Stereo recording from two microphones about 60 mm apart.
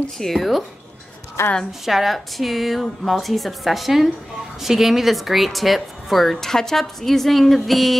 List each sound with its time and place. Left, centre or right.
0.2 s speech: centre
1.4 s a woman's voice: left
1.9 s speech: centre